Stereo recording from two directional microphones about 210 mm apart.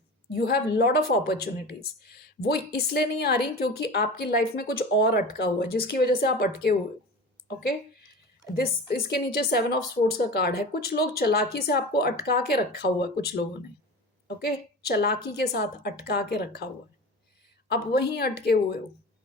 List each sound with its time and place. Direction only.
0.3 s speech: 50° left (ahead or behind)
17.7 s speech: 50° left (ahead or behind)